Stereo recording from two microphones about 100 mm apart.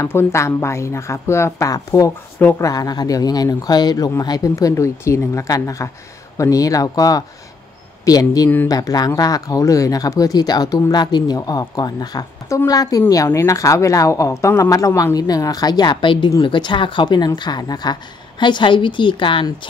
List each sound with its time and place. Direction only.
0.0 s a woman's voice: 25° left (ahead or behind); by 19.4 s 55° left (ahead or behind)